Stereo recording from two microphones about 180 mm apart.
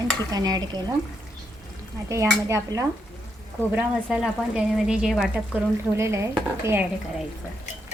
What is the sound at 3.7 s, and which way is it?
Speech, centre (ahead or behind).